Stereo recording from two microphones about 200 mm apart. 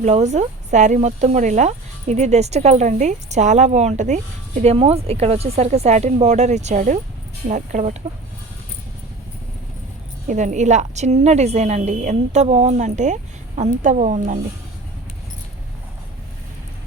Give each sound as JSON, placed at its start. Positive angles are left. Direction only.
{"t": 0.0, "sound": "speech", "side_deg": -35}
{"t": 10.2, "sound": "speech", "side_deg": -40}